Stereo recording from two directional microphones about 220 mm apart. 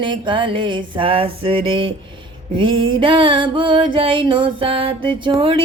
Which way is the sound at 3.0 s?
25° right (ahead or behind).